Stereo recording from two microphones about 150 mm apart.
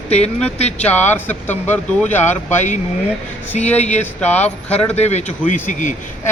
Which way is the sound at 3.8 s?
50° left (ahead or behind).